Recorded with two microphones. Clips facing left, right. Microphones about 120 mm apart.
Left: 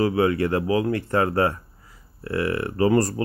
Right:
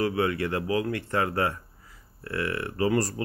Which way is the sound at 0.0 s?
30° left (ahead or behind).